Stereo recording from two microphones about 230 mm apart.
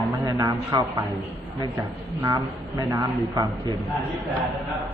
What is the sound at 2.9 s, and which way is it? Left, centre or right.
Speech, centre.